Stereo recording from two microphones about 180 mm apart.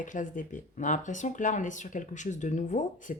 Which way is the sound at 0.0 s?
45° left (ahead or behind).